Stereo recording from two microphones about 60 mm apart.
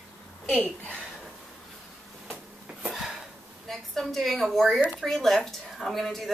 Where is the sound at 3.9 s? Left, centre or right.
Centre.